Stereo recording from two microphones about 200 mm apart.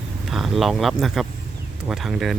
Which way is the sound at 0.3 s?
Centre (ahead or behind).